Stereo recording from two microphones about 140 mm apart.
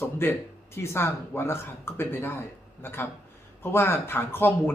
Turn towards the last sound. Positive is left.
turn(degrees=15)  # may be behind; listen again after turning